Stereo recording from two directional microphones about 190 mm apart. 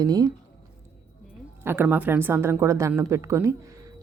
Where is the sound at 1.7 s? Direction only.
10° right (ahead or behind).